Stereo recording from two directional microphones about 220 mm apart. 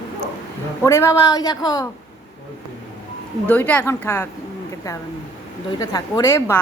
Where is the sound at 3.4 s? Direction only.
10° left (ahead or behind).